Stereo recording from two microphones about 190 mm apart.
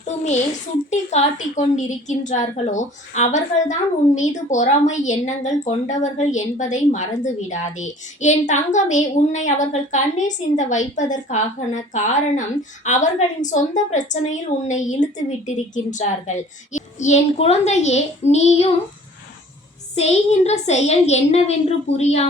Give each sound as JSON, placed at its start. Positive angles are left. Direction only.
{"t": 0.9, "sound": "a woman's voice", "side_deg": 40}
{"t": 20.0, "sound": "a woman's voice", "side_deg": 35}